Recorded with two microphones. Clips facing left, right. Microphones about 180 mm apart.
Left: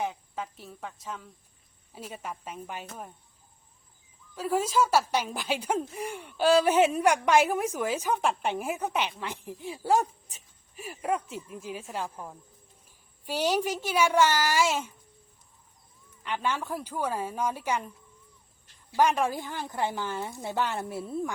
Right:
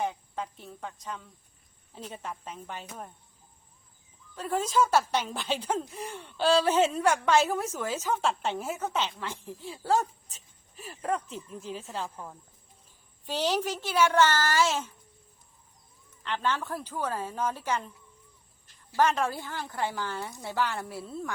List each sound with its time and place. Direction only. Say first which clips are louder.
0.0 s a woman's voice: right 1 dB; centre (ahead or behind)
4.4 s a woman's voice: left 1 dB; 10° left (ahead or behind)
16.2 s a woman's voice: even; 10° left (ahead or behind)
18.9 s a woman's voice: left 1 dB; 10° left (ahead or behind)